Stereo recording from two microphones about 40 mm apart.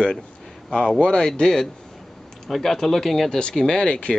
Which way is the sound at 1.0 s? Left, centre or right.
Left.